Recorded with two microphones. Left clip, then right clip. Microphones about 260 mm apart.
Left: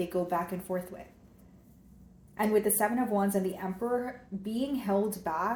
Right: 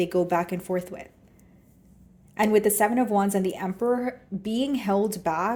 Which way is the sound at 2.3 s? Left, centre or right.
Right.